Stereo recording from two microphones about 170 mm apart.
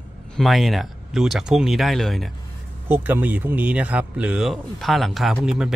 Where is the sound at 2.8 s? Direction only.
10° right (ahead or behind).